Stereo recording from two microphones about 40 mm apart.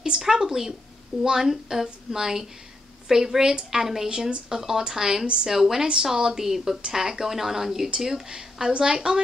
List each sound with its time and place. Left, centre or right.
0.2 s speech: centre
5.2 s a woman's voice: right
5.5 s speech: centre